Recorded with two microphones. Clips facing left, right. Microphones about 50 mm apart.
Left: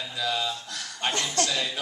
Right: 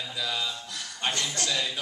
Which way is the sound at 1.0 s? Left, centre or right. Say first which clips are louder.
Left 1 dB; left.